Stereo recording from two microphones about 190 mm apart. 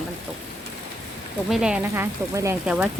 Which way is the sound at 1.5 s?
5° right (ahead or behind).